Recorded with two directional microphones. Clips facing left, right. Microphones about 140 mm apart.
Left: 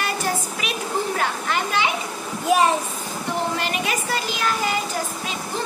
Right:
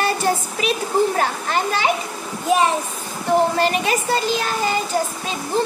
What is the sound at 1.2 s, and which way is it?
Speech, 35° right (ahead or behind).